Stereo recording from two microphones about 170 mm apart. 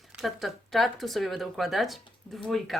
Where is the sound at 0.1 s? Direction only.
Centre (ahead or behind).